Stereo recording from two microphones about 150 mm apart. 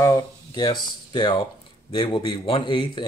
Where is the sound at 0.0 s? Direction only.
20° left (ahead or behind).